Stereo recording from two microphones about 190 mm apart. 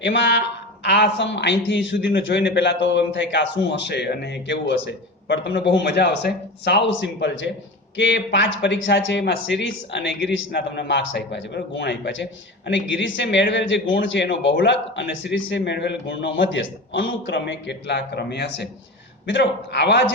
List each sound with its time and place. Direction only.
0.0 s a man's voice: 75° left (ahead or behind)